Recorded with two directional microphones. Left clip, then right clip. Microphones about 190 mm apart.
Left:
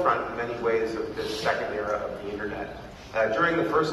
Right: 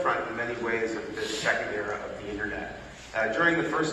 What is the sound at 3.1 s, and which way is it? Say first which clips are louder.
Speech: left 1 dB; 30° left (ahead or behind).